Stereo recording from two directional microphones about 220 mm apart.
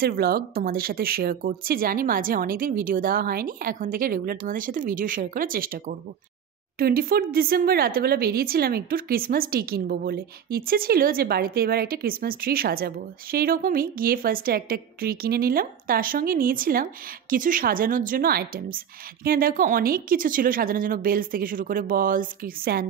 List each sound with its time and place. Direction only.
0.0 s speech: 45° right (ahead or behind)